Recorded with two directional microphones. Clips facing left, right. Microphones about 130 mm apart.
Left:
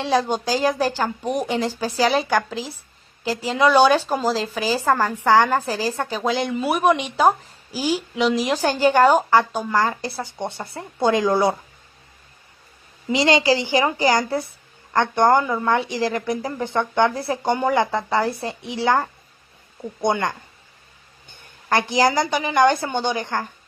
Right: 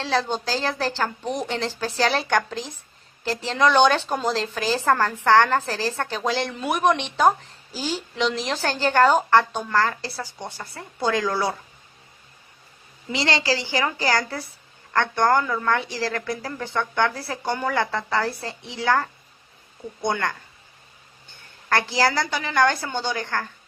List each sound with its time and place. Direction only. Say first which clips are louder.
0.0 s speech: left 4 dB; 15° left (ahead or behind)
13.1 s a woman's voice: left 6 dB; 20° left (ahead or behind)